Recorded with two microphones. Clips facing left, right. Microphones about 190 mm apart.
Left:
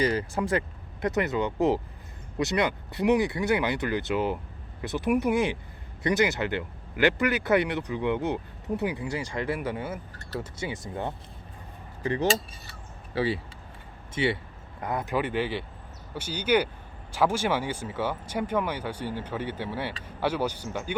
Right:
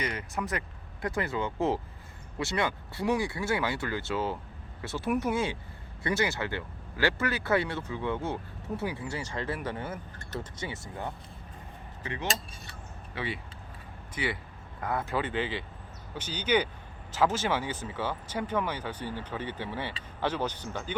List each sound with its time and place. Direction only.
0.0 s speech: 30° left (ahead or behind); by 10.8 s 15° left (ahead or behind)
12.0 s speech: 35° left (ahead or behind); by 20.9 s 10° left (ahead or behind)